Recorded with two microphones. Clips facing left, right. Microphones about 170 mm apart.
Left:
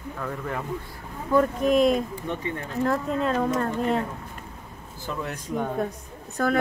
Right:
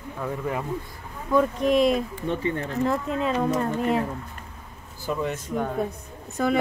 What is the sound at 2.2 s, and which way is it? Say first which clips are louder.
Speech: right 4 dB; 30° right (ahead or behind).